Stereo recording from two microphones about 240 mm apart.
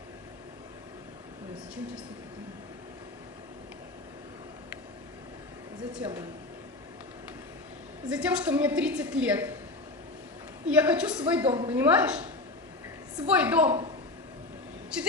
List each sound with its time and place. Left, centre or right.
5.9 s a woman's voice: centre
8.1 s a woman's voice: centre
10.7 s a woman's voice: centre
13.4 s a woman's voice: centre
14.9 s a sound: centre